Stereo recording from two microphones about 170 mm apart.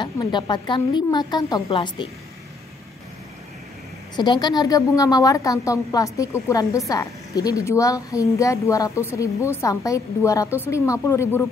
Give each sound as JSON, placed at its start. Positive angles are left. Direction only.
{"t": 0.0, "sound": "a woman's voice", "side_deg": 25}
{"t": 4.2, "sound": "a woman's voice", "side_deg": 25}